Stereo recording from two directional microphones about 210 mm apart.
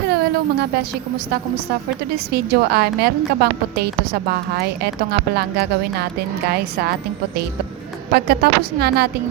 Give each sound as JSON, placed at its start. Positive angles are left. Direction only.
{"t": 0.1, "sound": "music", "side_deg": -50}
{"t": 2.1, "sound": "a woman's voice", "side_deg": -50}
{"t": 8.1, "sound": "a woman's voice", "side_deg": -50}